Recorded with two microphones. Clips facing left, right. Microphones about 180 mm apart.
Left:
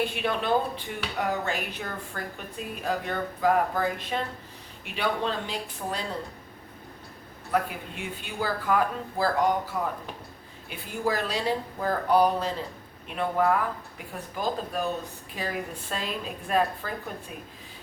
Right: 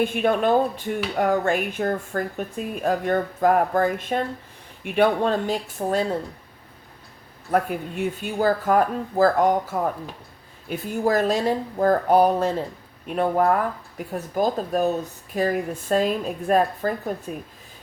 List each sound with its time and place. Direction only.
0.0 s speech: 50° right (ahead or behind)
7.5 s speech: 45° right (ahead or behind)